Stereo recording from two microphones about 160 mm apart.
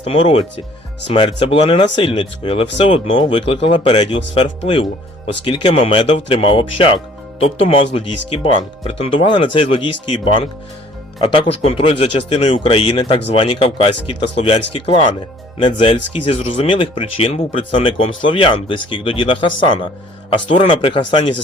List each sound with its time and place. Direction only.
0.0 s speech: 35° left (ahead or behind)